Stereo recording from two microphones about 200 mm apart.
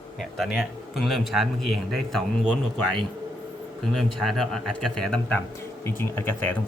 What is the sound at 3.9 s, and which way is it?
Speech, centre (ahead or behind).